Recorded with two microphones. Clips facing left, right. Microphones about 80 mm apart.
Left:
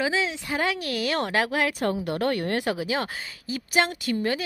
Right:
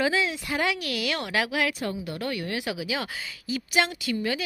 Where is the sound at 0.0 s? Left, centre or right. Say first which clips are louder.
Right 1 dB; left.